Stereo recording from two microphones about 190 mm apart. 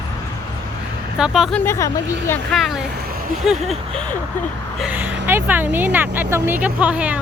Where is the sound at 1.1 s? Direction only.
5° right (ahead or behind).